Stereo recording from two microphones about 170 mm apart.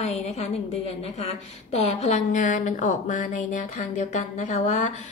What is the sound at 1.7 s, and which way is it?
A woman's voice, 40° left (ahead or behind).